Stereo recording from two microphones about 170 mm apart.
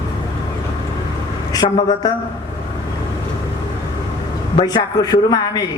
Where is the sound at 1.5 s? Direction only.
25° left (ahead or behind).